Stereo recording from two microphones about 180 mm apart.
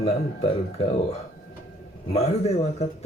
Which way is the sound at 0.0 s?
30° left (ahead or behind).